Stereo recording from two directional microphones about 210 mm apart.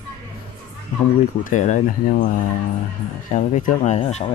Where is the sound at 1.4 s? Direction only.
35° left (ahead or behind).